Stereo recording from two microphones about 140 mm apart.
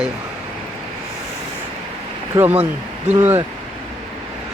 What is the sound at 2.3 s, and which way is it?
Speech, 15° right (ahead or behind).